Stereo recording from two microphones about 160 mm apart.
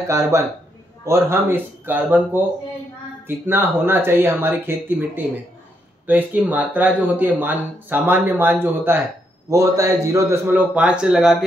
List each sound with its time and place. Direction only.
0.3 s speech: 20° right (ahead or behind)